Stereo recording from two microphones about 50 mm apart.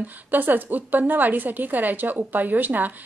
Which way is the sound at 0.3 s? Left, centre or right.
Right.